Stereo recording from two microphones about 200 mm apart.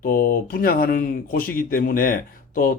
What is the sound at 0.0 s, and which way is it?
Speech, 45° left (ahead or behind).